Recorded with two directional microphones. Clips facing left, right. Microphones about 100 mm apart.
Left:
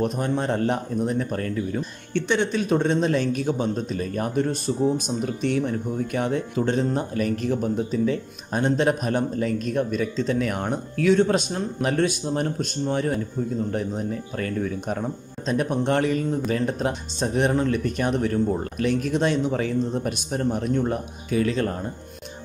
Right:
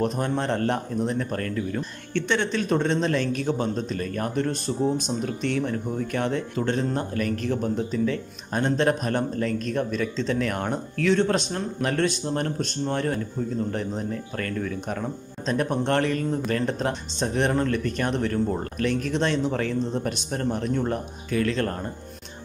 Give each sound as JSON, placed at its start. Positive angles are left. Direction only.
{"t": 0.0, "sound": "speech", "side_deg": 5}
{"t": 14.4, "sound": "speech", "side_deg": 15}
{"t": 15.4, "sound": "speech", "side_deg": 5}